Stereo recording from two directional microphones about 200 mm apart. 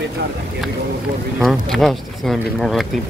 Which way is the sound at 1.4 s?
Centre (ahead or behind).